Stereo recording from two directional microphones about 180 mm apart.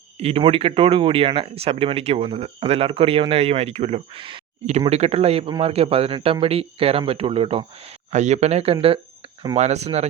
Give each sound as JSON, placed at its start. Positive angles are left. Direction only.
{"t": 0.2, "sound": "speech", "side_deg": -30}